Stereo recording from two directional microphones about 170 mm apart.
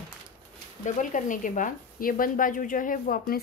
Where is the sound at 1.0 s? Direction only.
50° left (ahead or behind).